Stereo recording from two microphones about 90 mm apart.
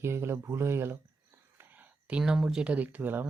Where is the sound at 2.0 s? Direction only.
10° right (ahead or behind).